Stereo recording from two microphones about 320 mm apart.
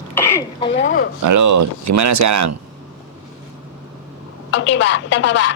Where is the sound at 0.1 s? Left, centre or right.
Centre.